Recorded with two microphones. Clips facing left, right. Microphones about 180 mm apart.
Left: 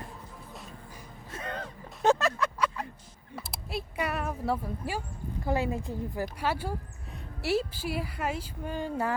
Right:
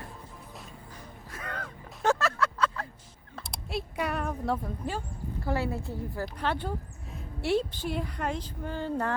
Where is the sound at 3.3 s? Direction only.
Centre (ahead or behind).